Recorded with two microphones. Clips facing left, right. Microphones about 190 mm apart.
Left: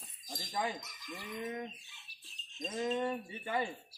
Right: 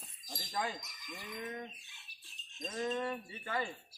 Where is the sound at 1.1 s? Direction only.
10° left (ahead or behind).